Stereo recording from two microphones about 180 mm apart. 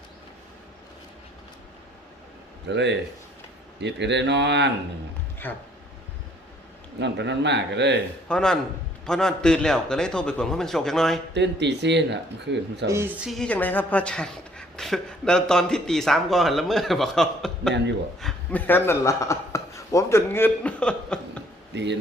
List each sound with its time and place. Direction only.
2.7 s speech: 75° right (ahead or behind)
5.4 s speech: 10° left (ahead or behind)
7.0 s speech: 75° right (ahead or behind)
8.3 s speech: 5° left (ahead or behind)
11.3 s speech: 75° right (ahead or behind)
12.9 s a man's voice: 10° right (ahead or behind)
18.7 s a man's voice: 15° left (ahead or behind)
21.7 s speech: 70° right (ahead or behind)